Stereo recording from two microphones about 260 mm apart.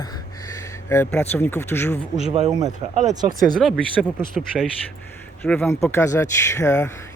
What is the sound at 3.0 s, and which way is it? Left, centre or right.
Speech, right.